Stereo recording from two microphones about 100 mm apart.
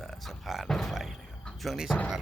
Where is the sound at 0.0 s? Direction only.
Centre (ahead or behind).